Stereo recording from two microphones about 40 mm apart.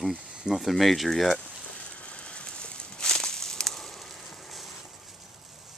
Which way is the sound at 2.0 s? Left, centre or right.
Left.